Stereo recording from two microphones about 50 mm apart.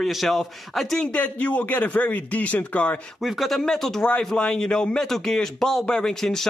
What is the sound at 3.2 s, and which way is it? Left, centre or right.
Speech, centre.